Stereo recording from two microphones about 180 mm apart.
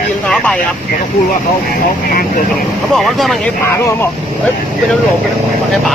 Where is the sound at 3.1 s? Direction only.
Centre (ahead or behind).